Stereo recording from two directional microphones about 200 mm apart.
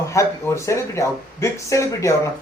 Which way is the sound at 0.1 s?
15° left (ahead or behind).